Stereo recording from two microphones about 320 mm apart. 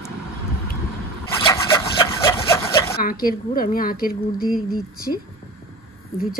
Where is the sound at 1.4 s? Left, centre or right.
Centre.